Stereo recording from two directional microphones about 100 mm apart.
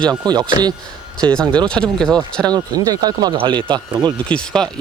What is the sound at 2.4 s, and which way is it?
Speech, 45° right (ahead or behind).